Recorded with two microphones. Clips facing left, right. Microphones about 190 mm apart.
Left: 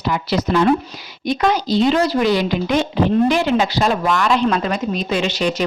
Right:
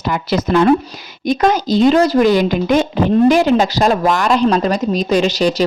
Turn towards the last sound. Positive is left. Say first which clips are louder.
# right 5 dB
turn(degrees=-40)  # may be behind; listen again after turning